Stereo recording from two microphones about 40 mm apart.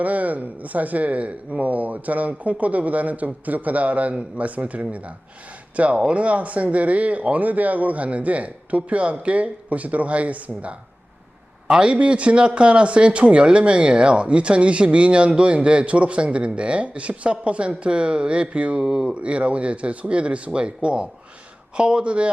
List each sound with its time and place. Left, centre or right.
0.0 s speech: right
11.7 s speech: right
11.9 s speech: right
19.2 s speech: right